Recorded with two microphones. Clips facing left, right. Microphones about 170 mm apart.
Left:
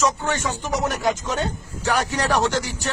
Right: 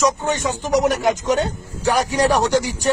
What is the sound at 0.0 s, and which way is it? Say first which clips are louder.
A man's voice: right 3 dB; 15° right (ahead or behind).